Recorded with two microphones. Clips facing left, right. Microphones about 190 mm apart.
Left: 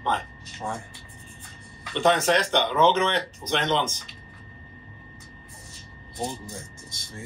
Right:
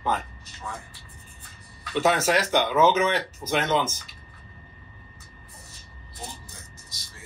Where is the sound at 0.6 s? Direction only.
45° left (ahead or behind).